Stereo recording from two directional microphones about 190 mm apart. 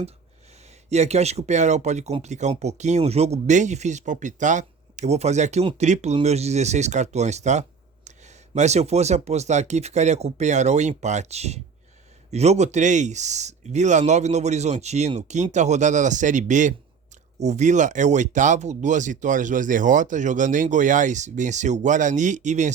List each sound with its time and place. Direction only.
0.9 s speech: 35° right (ahead or behind)